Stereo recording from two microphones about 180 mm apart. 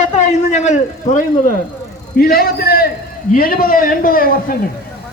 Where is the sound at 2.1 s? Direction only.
55° left (ahead or behind).